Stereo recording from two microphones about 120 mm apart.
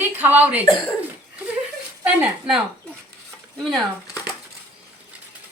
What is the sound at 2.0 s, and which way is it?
Speech, 5° right (ahead or behind).